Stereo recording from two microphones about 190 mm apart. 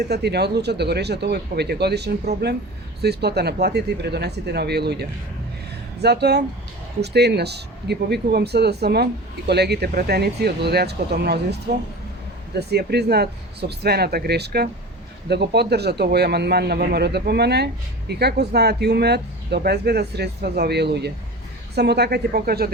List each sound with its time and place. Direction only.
0.1 s speech: 60° right (ahead or behind)
12.5 s speech: 60° right (ahead or behind)